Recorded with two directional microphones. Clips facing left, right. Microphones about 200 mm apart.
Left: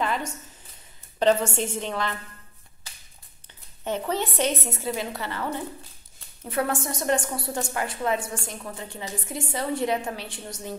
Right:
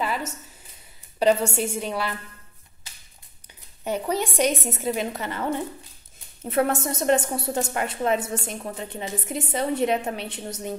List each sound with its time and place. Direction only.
0.0 s a sound: 5° right (ahead or behind)
1.2 s a woman's voice: 10° right (ahead or behind)
3.8 s a woman's voice: 10° right (ahead or behind)